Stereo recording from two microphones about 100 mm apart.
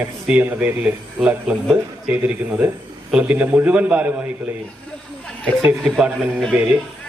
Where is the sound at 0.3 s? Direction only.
15° right (ahead or behind).